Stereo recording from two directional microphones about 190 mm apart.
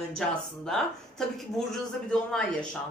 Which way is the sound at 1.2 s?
Centre (ahead or behind).